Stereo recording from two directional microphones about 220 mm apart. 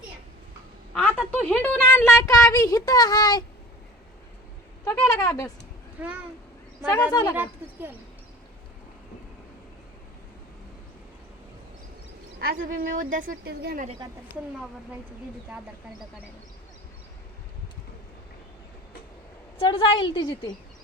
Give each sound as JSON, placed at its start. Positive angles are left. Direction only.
{"t": 0.9, "sound": "a sound", "side_deg": 10}
{"t": 1.4, "sound": "a child's voice", "side_deg": 5}
{"t": 4.9, "sound": "speech", "side_deg": 15}
{"t": 6.0, "sound": "speech", "side_deg": -5}
{"t": 6.9, "sound": "a woman's voice", "side_deg": 20}
{"t": 7.3, "sound": "speech", "side_deg": -10}
{"t": 12.4, "sound": "speech", "side_deg": -40}
{"t": 15.4, "sound": "speech", "side_deg": -5}
{"t": 19.5, "sound": "a woman's voice", "side_deg": 25}